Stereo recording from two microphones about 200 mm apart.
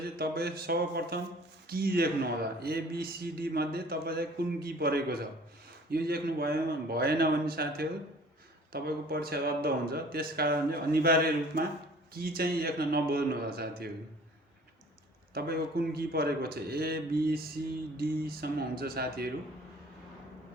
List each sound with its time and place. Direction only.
0.2 s a man's voice: 50° right (ahead or behind)
15.4 s speech: 50° right (ahead or behind)